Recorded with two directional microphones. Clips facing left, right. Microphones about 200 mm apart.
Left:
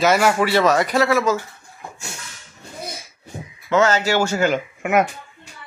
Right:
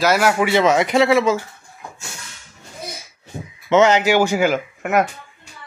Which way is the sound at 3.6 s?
20° right (ahead or behind).